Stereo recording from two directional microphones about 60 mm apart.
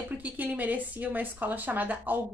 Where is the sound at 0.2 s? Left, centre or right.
Right.